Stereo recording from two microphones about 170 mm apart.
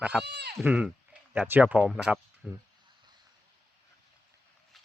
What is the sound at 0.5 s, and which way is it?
Speech, 5° right (ahead or behind).